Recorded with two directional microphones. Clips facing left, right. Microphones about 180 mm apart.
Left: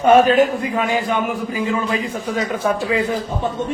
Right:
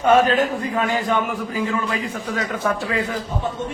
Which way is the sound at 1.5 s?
20° left (ahead or behind).